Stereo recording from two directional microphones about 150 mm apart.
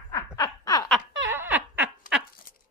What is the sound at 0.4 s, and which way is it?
Snicker, 25° left (ahead or behind).